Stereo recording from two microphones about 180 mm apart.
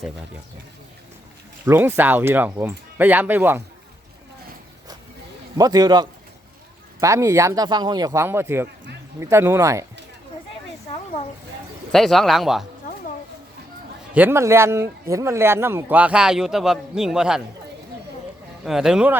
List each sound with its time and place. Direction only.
1.6 s speech: 10° right (ahead or behind)
5.5 s a man's voice: 20° right (ahead or behind)
11.9 s speech: centre (ahead or behind)
14.1 s speech: 10° right (ahead or behind)
18.6 s speech: 5° right (ahead or behind)